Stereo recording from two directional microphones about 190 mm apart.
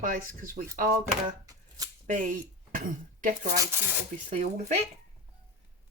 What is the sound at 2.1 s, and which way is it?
Speech, 45° right (ahead or behind).